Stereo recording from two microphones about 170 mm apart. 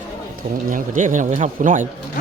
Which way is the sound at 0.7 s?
50° right (ahead or behind).